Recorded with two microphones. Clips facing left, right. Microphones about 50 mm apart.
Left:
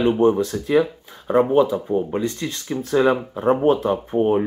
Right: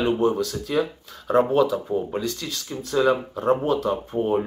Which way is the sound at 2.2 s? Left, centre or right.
Left.